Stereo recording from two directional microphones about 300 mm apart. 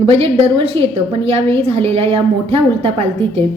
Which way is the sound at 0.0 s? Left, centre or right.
Centre.